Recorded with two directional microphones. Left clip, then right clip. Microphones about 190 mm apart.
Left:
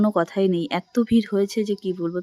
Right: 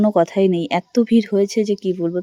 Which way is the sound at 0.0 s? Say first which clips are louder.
Right 5 dB; 15° right (ahead or behind).